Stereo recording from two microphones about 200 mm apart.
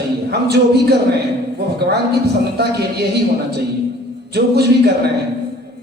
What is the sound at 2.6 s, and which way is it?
Speech, 55° right (ahead or behind).